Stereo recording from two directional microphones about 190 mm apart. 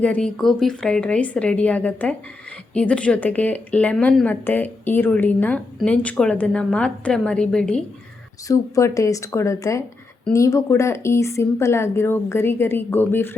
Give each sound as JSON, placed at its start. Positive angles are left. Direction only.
{"t": 0.0, "sound": "a woman's voice", "side_deg": 5}
{"t": 8.4, "sound": "a woman's voice", "side_deg": 15}